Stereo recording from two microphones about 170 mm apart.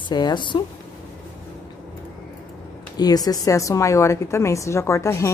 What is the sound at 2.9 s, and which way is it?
A woman's voice, 20° left (ahead or behind).